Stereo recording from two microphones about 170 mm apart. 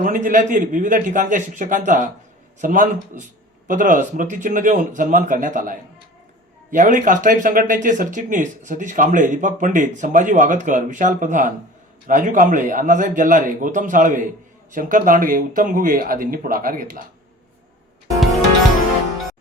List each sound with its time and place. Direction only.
0.0 s speech: 50° right (ahead or behind)